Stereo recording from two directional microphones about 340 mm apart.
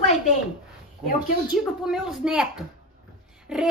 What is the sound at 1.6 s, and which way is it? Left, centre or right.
A woman's voice, centre.